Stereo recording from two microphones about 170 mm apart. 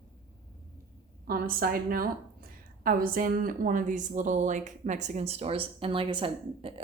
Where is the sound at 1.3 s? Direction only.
60° right (ahead or behind).